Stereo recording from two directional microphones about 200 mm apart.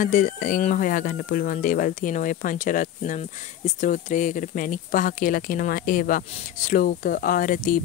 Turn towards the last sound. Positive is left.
turn(degrees=45)  # may be behind; listen again after turning